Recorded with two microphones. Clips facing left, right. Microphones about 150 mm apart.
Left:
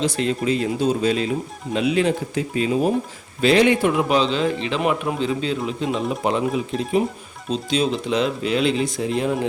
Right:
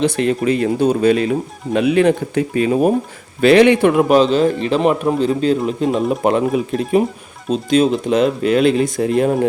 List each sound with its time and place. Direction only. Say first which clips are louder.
0.0 s speech: right 5 dB; 60° right (ahead or behind)
3.4 s a man's voice: right 6 dB; 65° right (ahead or behind); by 9.5 s 50° right (ahead or behind)